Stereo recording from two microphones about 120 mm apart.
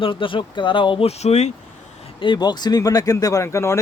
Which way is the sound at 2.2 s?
40° left (ahead or behind).